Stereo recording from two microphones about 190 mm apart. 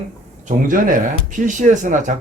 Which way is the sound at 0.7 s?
45° right (ahead or behind).